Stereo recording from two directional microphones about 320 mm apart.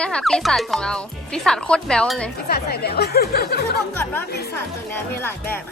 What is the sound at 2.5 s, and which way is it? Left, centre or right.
Speech, left.